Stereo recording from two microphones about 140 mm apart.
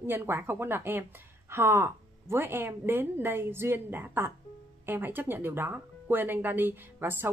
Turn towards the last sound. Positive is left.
turn(degrees=-15)  # may be behind; listen again after turning